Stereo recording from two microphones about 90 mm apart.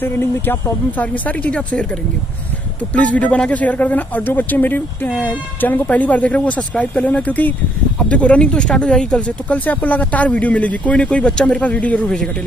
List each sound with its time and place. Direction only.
0.0 s speech: 25° left (ahead or behind)
2.9 s speech: 15° left (ahead or behind)